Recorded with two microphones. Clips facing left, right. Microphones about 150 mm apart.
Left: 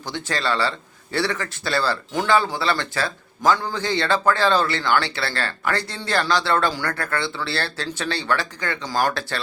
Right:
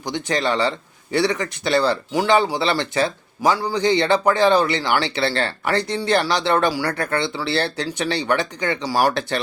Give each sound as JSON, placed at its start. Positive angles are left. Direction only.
{"t": 0.0, "sound": "speech", "side_deg": -15}